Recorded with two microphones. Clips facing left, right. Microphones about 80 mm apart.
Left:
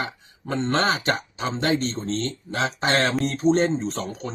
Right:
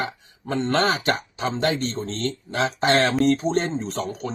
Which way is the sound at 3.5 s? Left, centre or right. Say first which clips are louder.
Left 4 dB; left.